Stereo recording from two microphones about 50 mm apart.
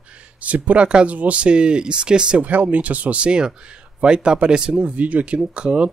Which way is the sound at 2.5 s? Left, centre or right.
Right.